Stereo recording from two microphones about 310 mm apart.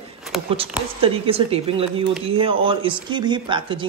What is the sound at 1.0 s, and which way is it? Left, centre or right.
Speech, centre.